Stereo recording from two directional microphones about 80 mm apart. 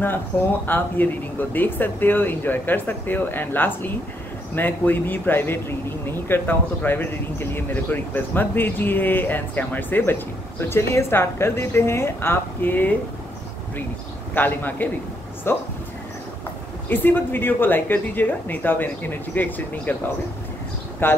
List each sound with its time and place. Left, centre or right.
0.0 s a woman's voice: left
14.3 s speech: left
16.9 s speech: left
21.0 s speech: left